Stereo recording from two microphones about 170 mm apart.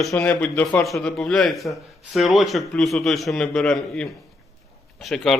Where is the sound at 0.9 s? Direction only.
Centre (ahead or behind).